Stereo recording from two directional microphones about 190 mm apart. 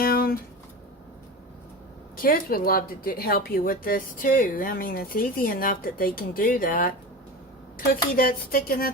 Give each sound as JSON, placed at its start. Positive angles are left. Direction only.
{"t": 0.0, "sound": "a sound", "side_deg": 50}
{"t": 2.2, "sound": "a woman's voice", "side_deg": 50}
{"t": 8.1, "sound": "a woman's voice", "side_deg": 50}